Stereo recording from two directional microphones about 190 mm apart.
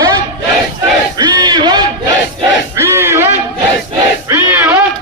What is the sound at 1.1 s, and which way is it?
Battle cry, 20° right (ahead or behind).